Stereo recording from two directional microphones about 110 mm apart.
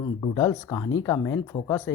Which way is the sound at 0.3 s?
30° left (ahead or behind).